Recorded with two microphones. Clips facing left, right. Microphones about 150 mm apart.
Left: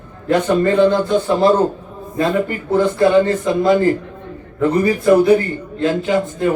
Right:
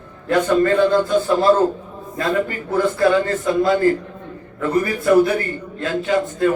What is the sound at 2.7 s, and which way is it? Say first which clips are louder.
A man's voice: left 4 dB; 25° left (ahead or behind).